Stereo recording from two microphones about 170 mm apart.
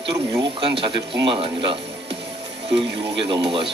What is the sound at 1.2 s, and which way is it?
Speech, 35° right (ahead or behind).